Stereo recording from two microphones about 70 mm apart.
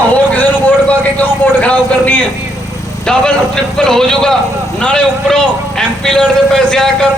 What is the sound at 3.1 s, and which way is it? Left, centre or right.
A man's voice, centre.